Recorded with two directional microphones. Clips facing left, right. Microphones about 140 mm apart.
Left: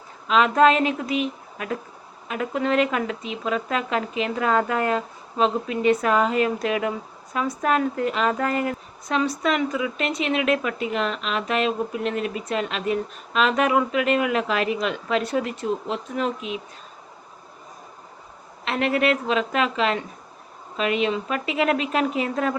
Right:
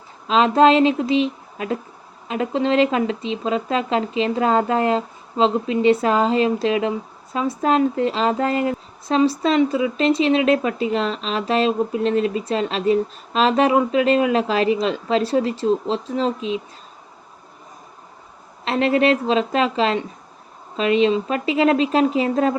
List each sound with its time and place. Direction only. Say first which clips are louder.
0.3 s speech: right 3 dB; 30° right (ahead or behind)
18.6 s speech: right 4 dB; 30° right (ahead or behind)